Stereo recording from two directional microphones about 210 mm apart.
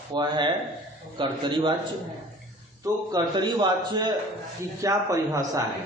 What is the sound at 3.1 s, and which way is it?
A man's voice, 20° right (ahead or behind).